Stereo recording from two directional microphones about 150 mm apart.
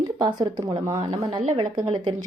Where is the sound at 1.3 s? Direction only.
40° right (ahead or behind).